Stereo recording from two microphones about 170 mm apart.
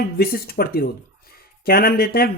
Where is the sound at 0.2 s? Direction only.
65° left (ahead or behind).